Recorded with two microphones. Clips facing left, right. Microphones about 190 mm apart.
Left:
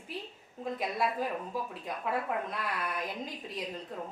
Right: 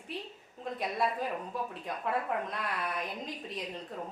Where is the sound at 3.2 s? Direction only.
Centre (ahead or behind).